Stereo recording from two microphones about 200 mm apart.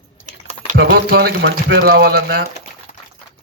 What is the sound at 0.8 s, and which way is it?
Speech, 50° right (ahead or behind).